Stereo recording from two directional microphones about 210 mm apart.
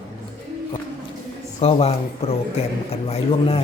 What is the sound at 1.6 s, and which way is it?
Speech, 30° left (ahead or behind).